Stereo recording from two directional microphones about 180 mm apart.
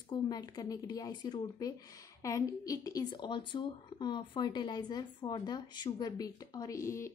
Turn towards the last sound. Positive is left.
turn(degrees=15)  # may be behind; listen again after turning